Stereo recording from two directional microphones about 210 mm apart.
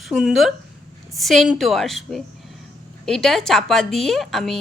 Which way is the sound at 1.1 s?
Centre (ahead or behind).